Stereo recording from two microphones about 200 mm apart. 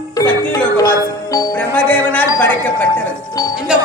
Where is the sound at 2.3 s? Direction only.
10° left (ahead or behind).